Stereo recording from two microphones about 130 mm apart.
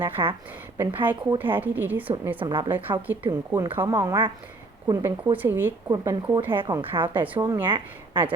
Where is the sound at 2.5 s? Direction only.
30° right (ahead or behind).